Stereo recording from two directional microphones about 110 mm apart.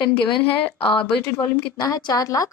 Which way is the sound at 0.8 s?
55° left (ahead or behind).